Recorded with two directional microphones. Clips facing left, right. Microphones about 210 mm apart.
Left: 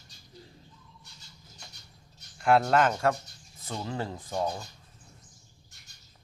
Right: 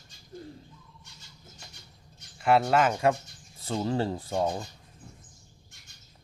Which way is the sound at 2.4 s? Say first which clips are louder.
Even; 5° right (ahead or behind).